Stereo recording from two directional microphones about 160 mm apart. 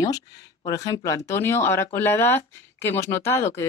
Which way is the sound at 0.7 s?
20° left (ahead or behind).